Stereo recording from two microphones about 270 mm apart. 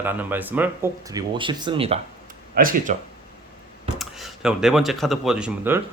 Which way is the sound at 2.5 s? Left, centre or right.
Right.